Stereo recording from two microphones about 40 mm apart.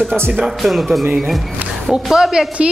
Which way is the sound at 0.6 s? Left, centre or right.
Centre.